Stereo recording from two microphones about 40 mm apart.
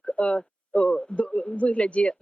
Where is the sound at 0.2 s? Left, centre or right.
Left.